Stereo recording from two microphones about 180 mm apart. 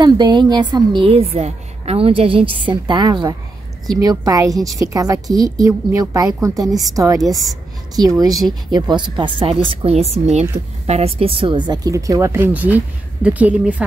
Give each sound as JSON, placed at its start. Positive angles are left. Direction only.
{"t": 0.0, "sound": "a woman's voice", "side_deg": -25}